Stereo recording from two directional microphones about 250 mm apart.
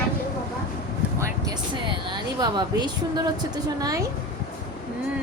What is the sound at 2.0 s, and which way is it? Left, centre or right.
A woman's voice, centre.